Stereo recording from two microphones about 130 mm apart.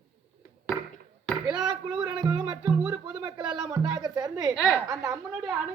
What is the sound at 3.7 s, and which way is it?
Speech, 30° right (ahead or behind).